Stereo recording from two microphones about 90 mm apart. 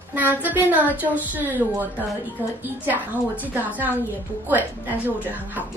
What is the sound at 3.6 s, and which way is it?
A woman's voice, 20° right (ahead or behind).